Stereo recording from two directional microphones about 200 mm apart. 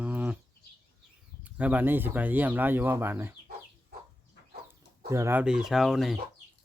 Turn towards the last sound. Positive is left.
turn(degrees=0)  # may be behind; listen again after turning